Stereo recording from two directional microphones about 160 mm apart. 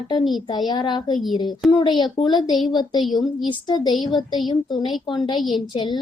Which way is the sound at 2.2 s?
40° left (ahead or behind).